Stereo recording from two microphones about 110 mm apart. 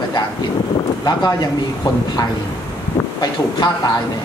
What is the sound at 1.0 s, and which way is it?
Speech, 40° left (ahead or behind).